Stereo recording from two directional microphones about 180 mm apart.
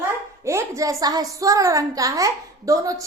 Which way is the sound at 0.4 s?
15° right (ahead or behind).